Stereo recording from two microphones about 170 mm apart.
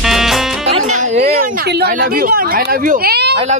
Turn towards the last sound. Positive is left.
turn(degrees=-75)  # may be behind; listen again after turning